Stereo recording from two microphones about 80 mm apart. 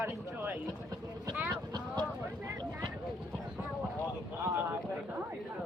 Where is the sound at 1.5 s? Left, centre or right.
Right.